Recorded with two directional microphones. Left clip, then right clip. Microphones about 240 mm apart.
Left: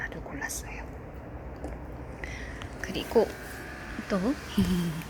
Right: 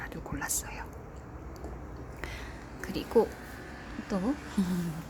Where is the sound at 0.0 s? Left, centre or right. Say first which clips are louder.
Left 2 dB; right.